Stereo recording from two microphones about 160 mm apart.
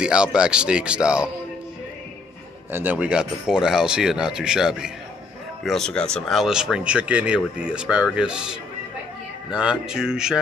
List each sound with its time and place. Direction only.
0.0 s speech: 5° right (ahead or behind)
2.7 s speech: 10° right (ahead or behind)